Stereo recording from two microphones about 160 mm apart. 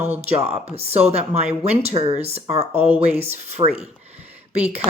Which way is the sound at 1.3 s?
10° right (ahead or behind).